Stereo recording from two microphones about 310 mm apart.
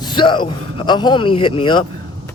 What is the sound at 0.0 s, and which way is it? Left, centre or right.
A man's voice, centre.